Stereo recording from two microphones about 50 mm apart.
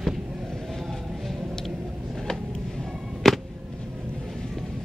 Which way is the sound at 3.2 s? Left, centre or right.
Centre.